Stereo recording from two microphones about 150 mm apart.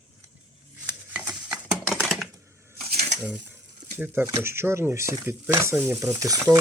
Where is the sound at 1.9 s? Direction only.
Centre (ahead or behind).